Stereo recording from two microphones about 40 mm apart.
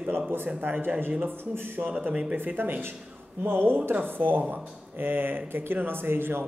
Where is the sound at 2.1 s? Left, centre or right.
Right.